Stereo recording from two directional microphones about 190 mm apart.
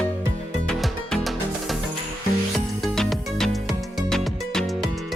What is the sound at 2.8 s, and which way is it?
Music, centre (ahead or behind).